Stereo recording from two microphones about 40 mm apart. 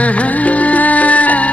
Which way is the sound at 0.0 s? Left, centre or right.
Left.